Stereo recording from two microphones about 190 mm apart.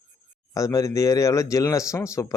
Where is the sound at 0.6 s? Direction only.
15° left (ahead or behind).